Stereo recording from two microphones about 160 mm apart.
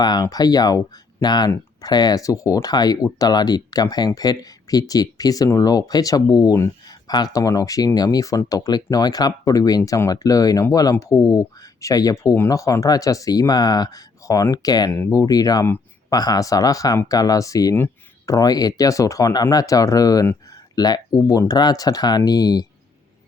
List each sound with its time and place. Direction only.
0.0 s speech: 25° left (ahead or behind)